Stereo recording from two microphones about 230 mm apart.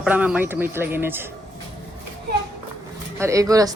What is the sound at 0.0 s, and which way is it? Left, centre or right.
Speech, centre.